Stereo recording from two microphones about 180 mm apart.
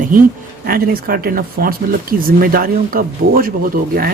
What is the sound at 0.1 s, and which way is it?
Speech, 50° right (ahead or behind).